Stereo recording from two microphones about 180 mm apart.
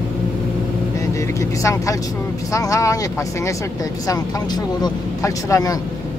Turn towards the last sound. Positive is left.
turn(degrees=20)  # may be behind; listen again after turning